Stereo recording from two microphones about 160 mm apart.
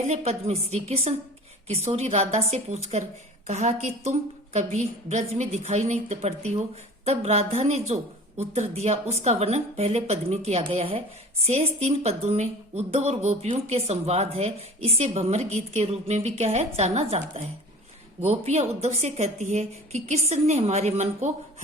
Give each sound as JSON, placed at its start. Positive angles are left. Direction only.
{"t": 0.1, "sound": "a woman's voice", "side_deg": -40}